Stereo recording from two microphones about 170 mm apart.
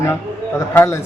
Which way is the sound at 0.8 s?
15° left (ahead or behind).